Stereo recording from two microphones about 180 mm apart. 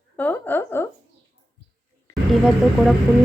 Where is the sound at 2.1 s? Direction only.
15° left (ahead or behind).